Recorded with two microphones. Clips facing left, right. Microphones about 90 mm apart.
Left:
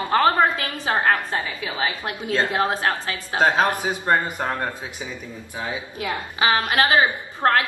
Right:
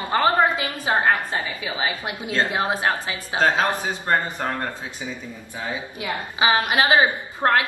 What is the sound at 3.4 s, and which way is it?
A man's voice, 15° left (ahead or behind).